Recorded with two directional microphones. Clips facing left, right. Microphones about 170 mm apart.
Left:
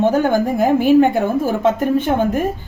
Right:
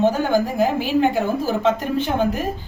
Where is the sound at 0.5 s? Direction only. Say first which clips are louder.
Left 7 dB; 50° left (ahead or behind).